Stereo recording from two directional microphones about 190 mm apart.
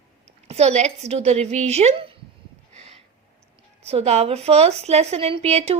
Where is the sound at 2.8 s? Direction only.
35° right (ahead or behind).